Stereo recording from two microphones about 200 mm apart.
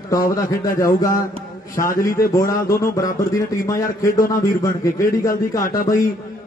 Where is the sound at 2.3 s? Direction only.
15° left (ahead or behind).